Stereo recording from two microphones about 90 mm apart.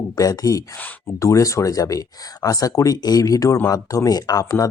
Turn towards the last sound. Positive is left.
turn(degrees=40)  # may be behind; listen again after turning